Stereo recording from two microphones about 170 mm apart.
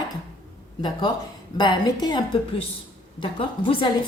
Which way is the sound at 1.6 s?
25° left (ahead or behind).